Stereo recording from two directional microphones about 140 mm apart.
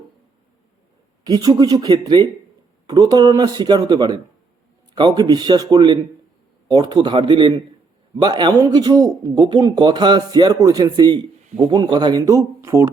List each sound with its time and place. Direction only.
1.2 s a man's voice: 25° right (ahead or behind)